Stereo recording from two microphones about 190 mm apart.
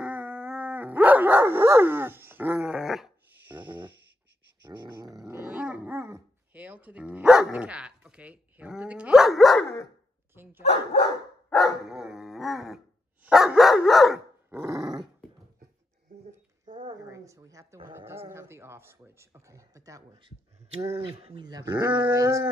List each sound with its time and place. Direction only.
0.0 s dog: 5° right (ahead or behind)
4.6 s dog: 20° right (ahead or behind); by 9.7 s centre (ahead or behind)
10.3 s speech: 10° right (ahead or behind)
10.6 s speech: 35° left (ahead or behind)
11.5 s dog: centre (ahead or behind)
14.5 s speech: 15° right (ahead or behind)
16.7 s speech: 20° right (ahead or behind)
21.2 s speech: 25° right (ahead or behind)